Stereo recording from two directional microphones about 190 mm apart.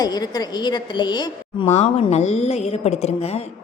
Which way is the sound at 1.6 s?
35° left (ahead or behind).